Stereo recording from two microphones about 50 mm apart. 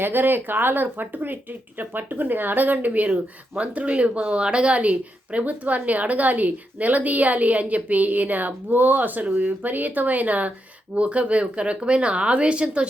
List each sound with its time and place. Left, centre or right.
0.0 s speech: right